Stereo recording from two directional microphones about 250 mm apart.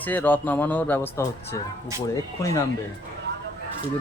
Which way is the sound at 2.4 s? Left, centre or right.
Centre.